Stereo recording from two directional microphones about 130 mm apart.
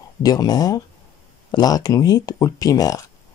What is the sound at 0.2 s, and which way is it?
Speech, 30° left (ahead or behind).